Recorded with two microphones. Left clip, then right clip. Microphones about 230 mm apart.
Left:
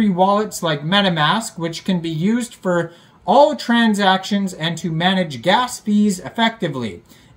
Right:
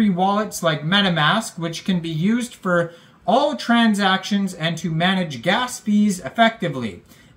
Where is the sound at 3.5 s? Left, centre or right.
Centre.